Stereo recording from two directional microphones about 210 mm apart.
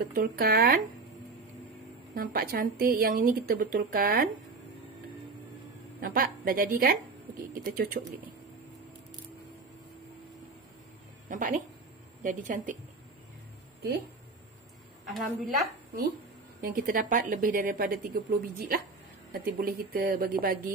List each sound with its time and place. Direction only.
0.1 s a woman's voice: 45° right (ahead or behind)
2.1 s a woman's voice: 45° right (ahead or behind)
5.9 s a woman's voice: 40° right (ahead or behind)
11.2 s a woman's voice: 40° right (ahead or behind)
15.0 s a woman's voice: centre (ahead or behind)
16.6 s a woman's voice: 40° right (ahead or behind)